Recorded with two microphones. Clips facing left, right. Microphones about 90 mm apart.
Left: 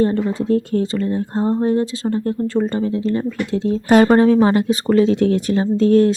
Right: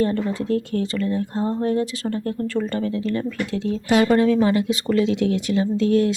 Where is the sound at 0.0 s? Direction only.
30° left (ahead or behind).